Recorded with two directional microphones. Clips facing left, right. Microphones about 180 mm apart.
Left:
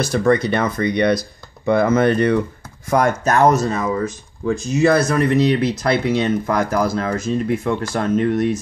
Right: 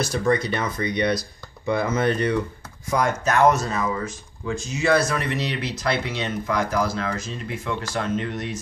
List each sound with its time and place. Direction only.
0.1 s speech: 60° left (ahead or behind)
3.3 s speech: 40° left (ahead or behind)